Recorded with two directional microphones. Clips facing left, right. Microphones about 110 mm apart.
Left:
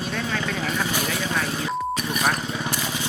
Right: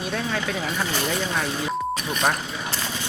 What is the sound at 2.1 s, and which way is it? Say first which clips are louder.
Speech: right 1 dB; 5° left (ahead or behind).